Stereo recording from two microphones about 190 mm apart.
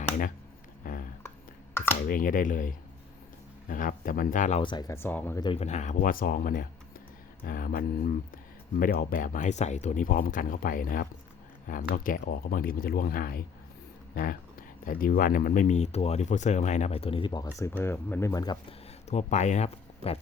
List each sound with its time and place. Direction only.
1.7 s computer keyboard: 10° left (ahead or behind)
2.0 s speech: 45° left (ahead or behind)
4.6 s speech: 25° left (ahead or behind)
5.4 s speech: 25° left (ahead or behind)
5.6 s speech: 40° left (ahead or behind)
14.8 s speech: 50° left (ahead or behind); by 18.5 s 15° left (ahead or behind)
19.0 s speech: 35° left (ahead or behind)